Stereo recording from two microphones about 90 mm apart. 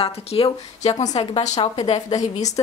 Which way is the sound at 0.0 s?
90° left.